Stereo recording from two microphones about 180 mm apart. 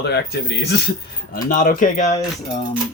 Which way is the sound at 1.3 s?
50° left (ahead or behind).